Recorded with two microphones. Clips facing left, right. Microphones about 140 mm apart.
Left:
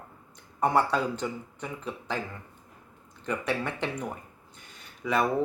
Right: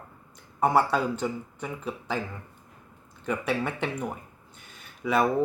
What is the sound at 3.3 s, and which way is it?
Speech, 10° right (ahead or behind).